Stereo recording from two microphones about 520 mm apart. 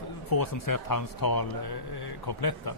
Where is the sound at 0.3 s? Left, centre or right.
Left.